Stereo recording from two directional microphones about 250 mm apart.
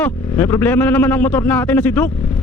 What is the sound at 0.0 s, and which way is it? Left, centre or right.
Speech, centre.